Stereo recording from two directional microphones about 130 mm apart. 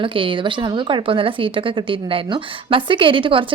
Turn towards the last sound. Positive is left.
turn(degrees=-40)  # may be behind; listen again after turning